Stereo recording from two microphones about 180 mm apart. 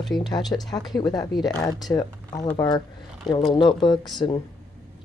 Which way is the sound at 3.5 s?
25° left (ahead or behind).